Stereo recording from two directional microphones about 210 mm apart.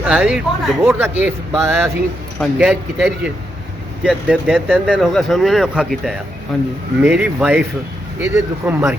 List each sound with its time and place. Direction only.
0.0 s speech: 5° right (ahead or behind)